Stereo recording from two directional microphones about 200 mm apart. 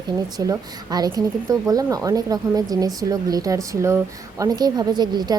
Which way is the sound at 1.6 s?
15° right (ahead or behind).